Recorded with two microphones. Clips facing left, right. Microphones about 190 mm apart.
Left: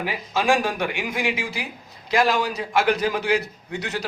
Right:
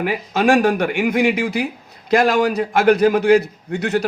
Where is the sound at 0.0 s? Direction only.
55° right (ahead or behind).